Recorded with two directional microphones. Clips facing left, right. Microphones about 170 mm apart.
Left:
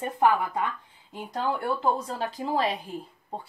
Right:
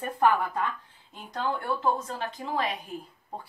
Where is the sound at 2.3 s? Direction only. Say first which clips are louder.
Left 4 dB; 35° left (ahead or behind).